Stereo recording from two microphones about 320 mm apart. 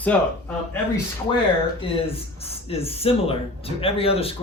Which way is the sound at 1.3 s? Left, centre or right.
Centre.